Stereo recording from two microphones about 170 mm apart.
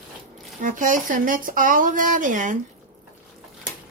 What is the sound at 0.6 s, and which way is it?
Speech, 50° right (ahead or behind).